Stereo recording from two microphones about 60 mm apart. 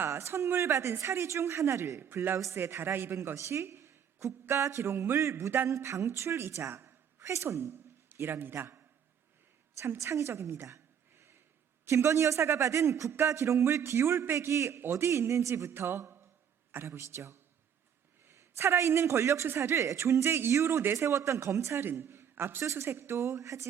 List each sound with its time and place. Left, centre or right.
0.1 s speech: right
2.6 s a man's voice: right
3.2 s a woman's voice: right
7.6 s a man's voice: right
10.0 s speech: right
10.7 s a sound: right
11.9 s a woman's voice: right